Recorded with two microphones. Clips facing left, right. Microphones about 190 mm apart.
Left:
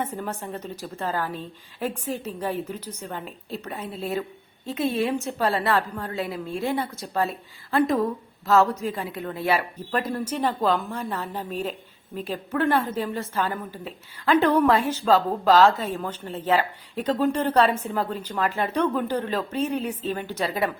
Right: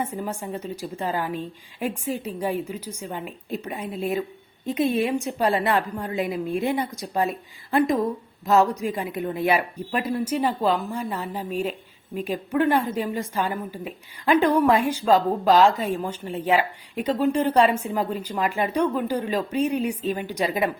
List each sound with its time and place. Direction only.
0.0 s a woman's voice: 10° right (ahead or behind)